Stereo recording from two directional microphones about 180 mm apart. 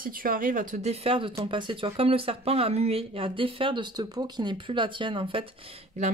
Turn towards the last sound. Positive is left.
turn(degrees=-35)  # may be behind; listen again after turning